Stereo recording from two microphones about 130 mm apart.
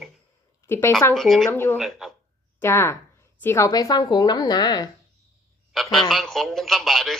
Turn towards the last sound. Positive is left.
turn(degrees=0)  # may be behind; listen again after turning